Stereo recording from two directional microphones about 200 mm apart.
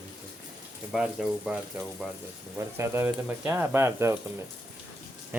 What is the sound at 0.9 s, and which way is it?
Speech, 5° right (ahead or behind).